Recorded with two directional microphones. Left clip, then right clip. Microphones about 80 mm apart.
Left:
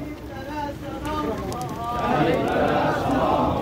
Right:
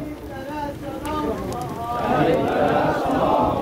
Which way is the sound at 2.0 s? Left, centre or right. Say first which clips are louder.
Right 2 dB; left.